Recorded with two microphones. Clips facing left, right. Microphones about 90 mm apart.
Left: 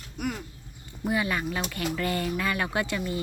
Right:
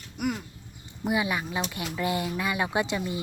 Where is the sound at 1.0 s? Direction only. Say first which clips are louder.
Even; 15° right (ahead or behind).